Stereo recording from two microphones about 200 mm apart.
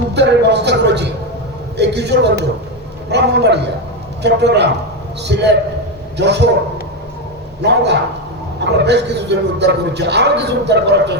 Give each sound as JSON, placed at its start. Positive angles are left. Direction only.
{"t": 0.1, "sound": "a man's voice", "side_deg": -60}
{"t": 7.6, "sound": "a man's voice", "side_deg": -60}